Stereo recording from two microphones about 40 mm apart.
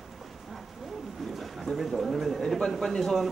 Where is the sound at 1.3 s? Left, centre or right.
Centre.